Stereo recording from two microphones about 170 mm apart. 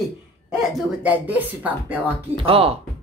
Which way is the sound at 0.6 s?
5° right (ahead or behind).